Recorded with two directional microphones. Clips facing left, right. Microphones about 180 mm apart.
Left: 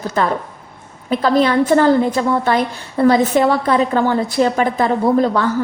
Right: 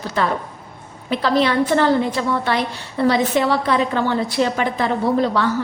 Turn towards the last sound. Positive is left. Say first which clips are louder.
# left 3 dB
turn(degrees=45)  # may be behind; listen again after turning